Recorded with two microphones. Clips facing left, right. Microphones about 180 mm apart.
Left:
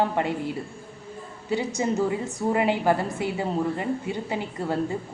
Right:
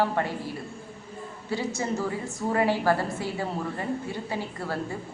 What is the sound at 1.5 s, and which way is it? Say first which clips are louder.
A woman's voice: left 4 dB; 20° left (ahead or behind).